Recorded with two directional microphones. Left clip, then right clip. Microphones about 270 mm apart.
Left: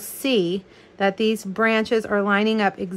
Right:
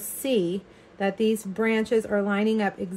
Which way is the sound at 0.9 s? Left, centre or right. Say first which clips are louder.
Left 4 dB; left.